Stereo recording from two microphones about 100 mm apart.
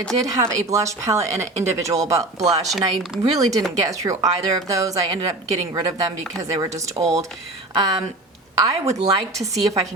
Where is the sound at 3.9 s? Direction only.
35° right (ahead or behind).